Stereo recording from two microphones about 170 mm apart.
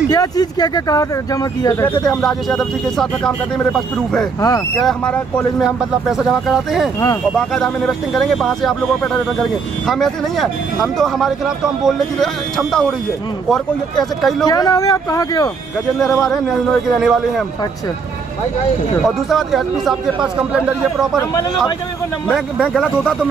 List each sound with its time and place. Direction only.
0.1 s speech: 20° left (ahead or behind)
2.0 s speech: centre (ahead or behind)
14.4 s speech: 20° left (ahead or behind)
16.2 s speech: centre (ahead or behind)
19.0 s speech: centre (ahead or behind)
21.2 s speech: 20° left (ahead or behind)
22.3 s speech: centre (ahead or behind)